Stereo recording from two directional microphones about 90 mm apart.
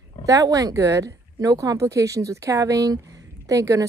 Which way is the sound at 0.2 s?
40° right (ahead or behind).